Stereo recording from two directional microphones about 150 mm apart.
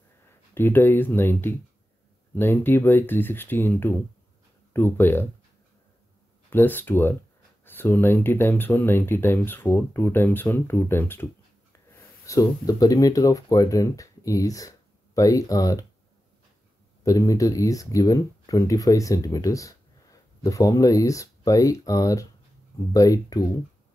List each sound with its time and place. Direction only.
0.6 s speech: 15° left (ahead or behind)
6.5 s speech: 15° left (ahead or behind)
17.0 s speech: 20° left (ahead or behind)